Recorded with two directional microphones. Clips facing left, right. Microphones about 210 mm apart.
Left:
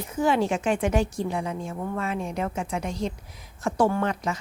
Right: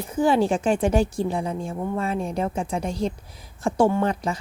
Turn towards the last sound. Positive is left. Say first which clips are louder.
# right 3 dB
turn(degrees=-30)  # may be behind; listen again after turning